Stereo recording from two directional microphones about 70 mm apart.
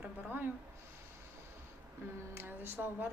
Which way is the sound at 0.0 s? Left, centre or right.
Right.